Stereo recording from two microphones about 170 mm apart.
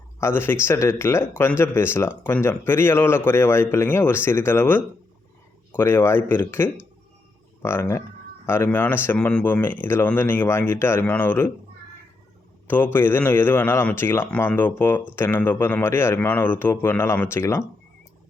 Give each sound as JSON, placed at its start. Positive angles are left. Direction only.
{"t": 0.2, "sound": "a man's voice", "side_deg": 15}
{"t": 12.6, "sound": "a man's voice", "side_deg": 10}